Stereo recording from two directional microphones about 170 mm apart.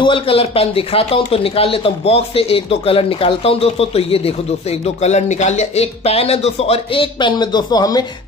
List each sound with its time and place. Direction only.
0.0 s a man's voice: 30° left (ahead or behind)